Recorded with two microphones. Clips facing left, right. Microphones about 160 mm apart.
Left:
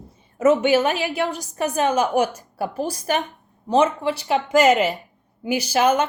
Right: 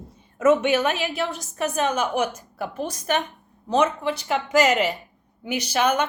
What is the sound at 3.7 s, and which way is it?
A woman's voice, 30° left (ahead or behind).